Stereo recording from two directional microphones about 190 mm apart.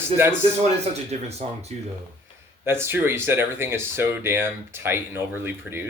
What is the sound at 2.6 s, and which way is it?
Speech, 10° right (ahead or behind).